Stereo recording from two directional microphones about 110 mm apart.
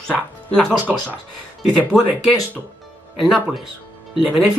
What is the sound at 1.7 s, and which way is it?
Speech, 10° left (ahead or behind).